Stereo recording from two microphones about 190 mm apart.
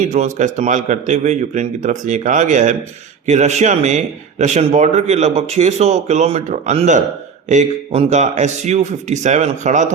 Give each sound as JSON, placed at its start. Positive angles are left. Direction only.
{"t": 0.0, "sound": "a man's voice", "side_deg": -40}